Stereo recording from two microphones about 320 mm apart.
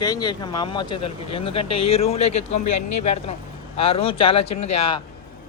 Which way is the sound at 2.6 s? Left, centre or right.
Left.